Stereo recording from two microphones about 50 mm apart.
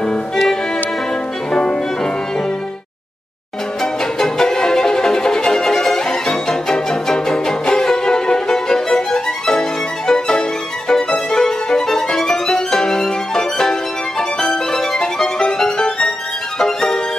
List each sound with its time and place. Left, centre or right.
1.5 s music: centre
3.8 s music: centre
10.9 s violin: centre
14.4 s music: centre